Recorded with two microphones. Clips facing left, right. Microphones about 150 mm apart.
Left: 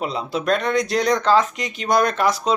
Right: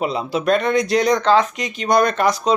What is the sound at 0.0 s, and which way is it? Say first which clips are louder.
Speech: right 3 dB; 5° right (ahead or behind).